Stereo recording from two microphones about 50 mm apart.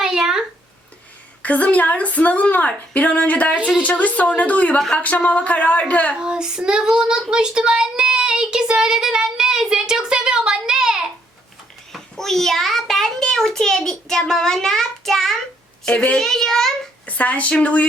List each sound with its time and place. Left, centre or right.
0.0 s a sound: centre
1.4 s speech: left
6.2 s child singing: centre
11.9 s a child's voice: centre
15.9 s speech: left
16.1 s a child's voice: centre
17.1 s speech: left